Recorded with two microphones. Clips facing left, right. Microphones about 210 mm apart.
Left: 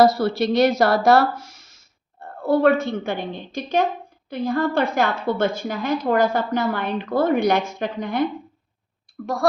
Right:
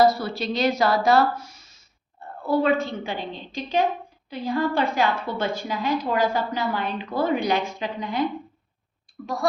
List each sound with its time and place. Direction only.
0.0 s speech: 75° left (ahead or behind); by 1.6 s 90° left
2.1 s a woman's voice: 50° left (ahead or behind)